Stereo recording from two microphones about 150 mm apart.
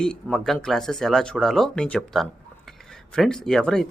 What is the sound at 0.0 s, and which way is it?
Speech, 5° left (ahead or behind).